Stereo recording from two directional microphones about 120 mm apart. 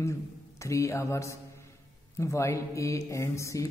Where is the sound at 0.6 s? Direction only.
25° left (ahead or behind).